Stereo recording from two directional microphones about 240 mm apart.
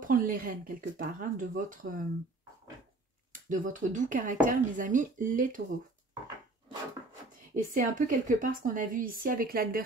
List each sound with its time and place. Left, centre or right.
0.0 s a woman's voice: right
3.4 s a woman's voice: right
7.5 s a woman's voice: right